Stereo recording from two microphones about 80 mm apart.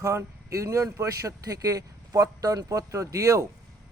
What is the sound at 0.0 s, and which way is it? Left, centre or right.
A man's voice, right.